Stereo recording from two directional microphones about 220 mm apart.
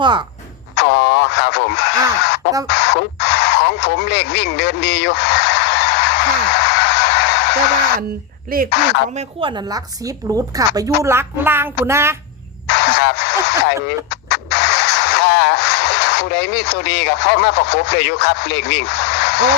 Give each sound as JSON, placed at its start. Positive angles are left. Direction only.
{"t": 0.0, "sound": "speech", "side_deg": -20}
{"t": 0.8, "sound": "radio", "side_deg": 50}
{"t": 8.4, "sound": "speech", "side_deg": -40}
{"t": 9.1, "sound": "a woman's voice", "side_deg": -20}
{"t": 12.6, "sound": "a sound", "side_deg": 50}
{"t": 13.8, "sound": "music", "side_deg": 50}